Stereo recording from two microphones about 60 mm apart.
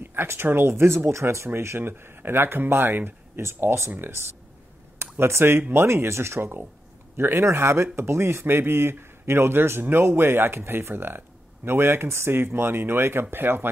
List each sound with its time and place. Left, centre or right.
0.0 s speech: right
5.1 s speech: right